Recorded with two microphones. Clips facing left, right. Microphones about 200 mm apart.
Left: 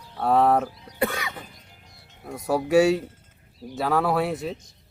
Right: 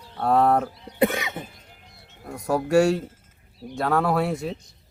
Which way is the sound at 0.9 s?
20° right (ahead or behind).